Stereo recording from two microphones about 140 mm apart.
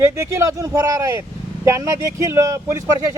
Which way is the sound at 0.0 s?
20° right (ahead or behind).